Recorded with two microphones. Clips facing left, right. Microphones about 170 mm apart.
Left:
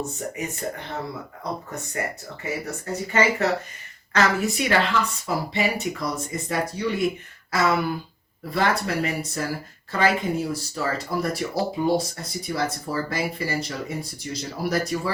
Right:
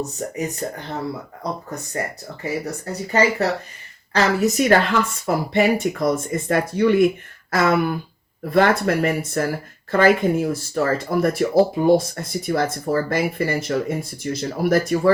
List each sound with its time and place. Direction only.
0.6 s speech: 35° right (ahead or behind)
2.4 s speech: 35° right (ahead or behind); by 15.1 s 55° right (ahead or behind)